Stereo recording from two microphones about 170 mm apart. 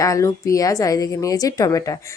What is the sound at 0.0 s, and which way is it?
Speech, 20° left (ahead or behind).